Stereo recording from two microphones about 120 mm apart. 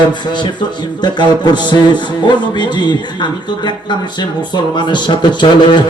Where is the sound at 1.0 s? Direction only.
35° left (ahead or behind).